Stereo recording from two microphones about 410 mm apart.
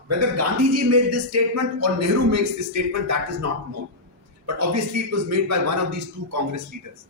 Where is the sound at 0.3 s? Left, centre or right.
Right.